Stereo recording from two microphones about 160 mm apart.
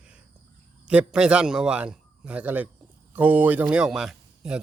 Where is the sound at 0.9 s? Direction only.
5° right (ahead or behind).